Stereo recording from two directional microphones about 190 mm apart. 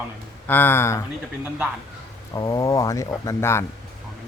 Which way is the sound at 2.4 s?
20° left (ahead or behind).